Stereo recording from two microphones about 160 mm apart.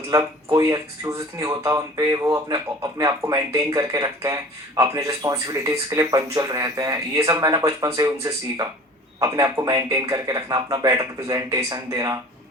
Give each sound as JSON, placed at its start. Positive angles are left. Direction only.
{"t": 0.1, "sound": "speech", "side_deg": -20}